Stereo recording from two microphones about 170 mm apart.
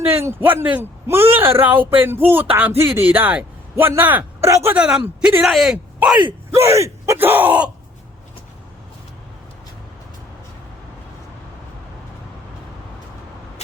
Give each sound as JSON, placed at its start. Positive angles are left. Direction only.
{"t": 0.0, "sound": "a man's voice", "side_deg": -15}
{"t": 6.5, "sound": "a man's voice", "side_deg": -15}